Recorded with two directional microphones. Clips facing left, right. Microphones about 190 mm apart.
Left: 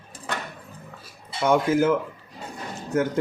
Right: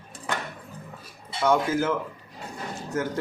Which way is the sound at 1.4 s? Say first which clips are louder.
Left 3 dB; 15° left (ahead or behind).